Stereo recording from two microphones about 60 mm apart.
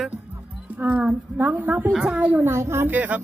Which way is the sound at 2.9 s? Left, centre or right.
Right.